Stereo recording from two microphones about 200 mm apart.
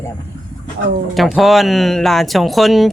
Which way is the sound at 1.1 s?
Centre (ahead or behind).